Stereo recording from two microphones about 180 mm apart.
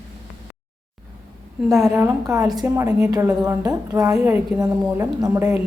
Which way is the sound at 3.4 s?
20° right (ahead or behind).